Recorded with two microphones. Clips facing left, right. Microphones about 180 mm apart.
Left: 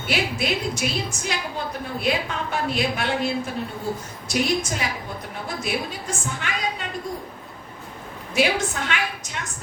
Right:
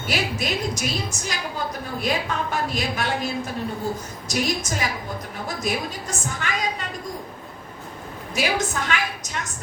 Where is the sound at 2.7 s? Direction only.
40° right (ahead or behind).